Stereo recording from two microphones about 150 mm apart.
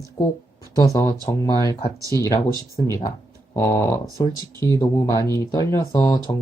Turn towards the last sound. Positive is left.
turn(degrees=25)  # may be behind; listen again after turning